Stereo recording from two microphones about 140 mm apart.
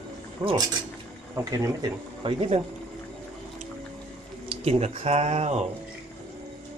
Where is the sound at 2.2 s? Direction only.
40° right (ahead or behind).